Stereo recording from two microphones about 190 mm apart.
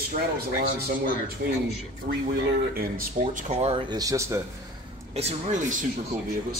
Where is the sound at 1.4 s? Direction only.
60° right (ahead or behind).